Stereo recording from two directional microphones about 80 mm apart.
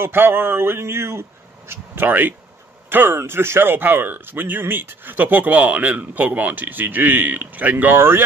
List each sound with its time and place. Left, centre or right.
0.0 s speech: right